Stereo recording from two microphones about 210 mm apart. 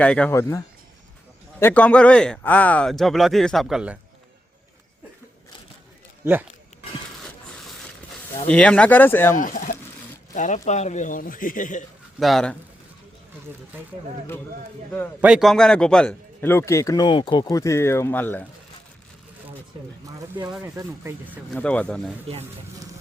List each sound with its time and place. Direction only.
0.0 s a man's voice: 5° left (ahead or behind)
6.2 s speech: 10° right (ahead or behind)
8.4 s a man's voice: 5° left (ahead or behind)
9.4 s a sound: 40° left (ahead or behind)
10.3 s speech: 35° left (ahead or behind)
12.2 s speech: centre (ahead or behind)
15.2 s a man's voice: centre (ahead or behind)
20.1 s speech: 15° right (ahead or behind)
21.5 s speech: 5° left (ahead or behind)